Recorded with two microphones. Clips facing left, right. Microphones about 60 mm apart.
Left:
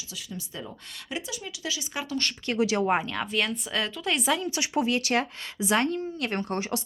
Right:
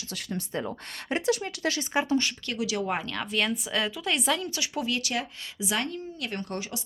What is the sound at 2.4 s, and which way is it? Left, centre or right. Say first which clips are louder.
Speech: left 5 dB; left.